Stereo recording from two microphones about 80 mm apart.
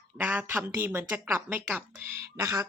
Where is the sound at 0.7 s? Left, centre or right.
Right.